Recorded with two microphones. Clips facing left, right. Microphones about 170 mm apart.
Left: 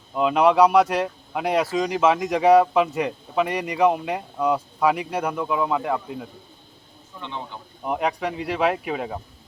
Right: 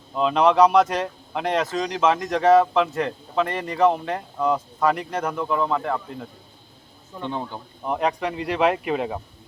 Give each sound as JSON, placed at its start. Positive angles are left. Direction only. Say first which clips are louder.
{"t": 0.1, "sound": "speech", "louder": "left 1 dB", "side_deg": 5}
{"t": 7.2, "sound": "speech", "louder": "right 5 dB", "side_deg": -45}
{"t": 7.9, "sound": "speech", "louder": "right 1 dB", "side_deg": 5}